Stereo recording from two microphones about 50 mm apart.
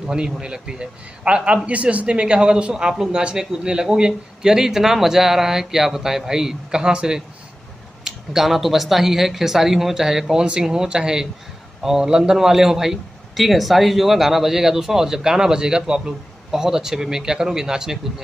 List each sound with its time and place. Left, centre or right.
0.0 s a man's voice: centre